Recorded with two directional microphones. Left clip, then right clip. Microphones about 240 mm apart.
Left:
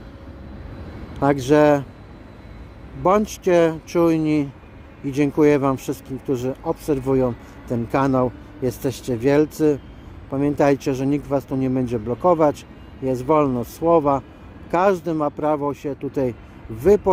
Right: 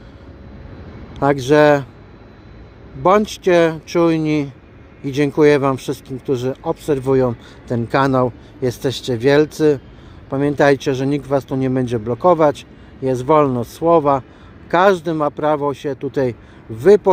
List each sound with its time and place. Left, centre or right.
1.2 s speech: centre
3.0 s speech: centre